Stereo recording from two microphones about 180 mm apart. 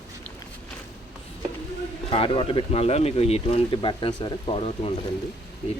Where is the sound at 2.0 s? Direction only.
30° left (ahead or behind).